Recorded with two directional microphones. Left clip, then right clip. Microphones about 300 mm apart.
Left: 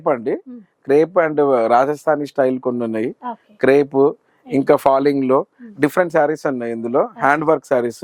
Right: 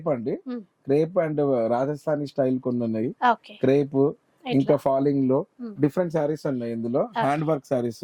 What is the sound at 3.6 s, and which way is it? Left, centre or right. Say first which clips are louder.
Speech: left 8 dB; left.